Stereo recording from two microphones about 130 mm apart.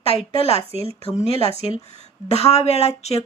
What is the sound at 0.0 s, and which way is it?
Speech, 50° left (ahead or behind).